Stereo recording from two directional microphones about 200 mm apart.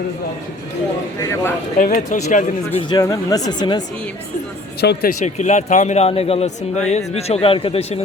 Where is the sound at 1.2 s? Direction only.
15° left (ahead or behind).